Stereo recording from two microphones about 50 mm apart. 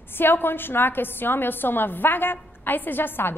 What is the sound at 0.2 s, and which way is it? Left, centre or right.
A woman's voice, left.